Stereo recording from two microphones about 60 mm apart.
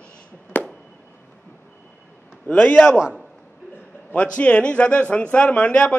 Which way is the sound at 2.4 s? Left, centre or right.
Left.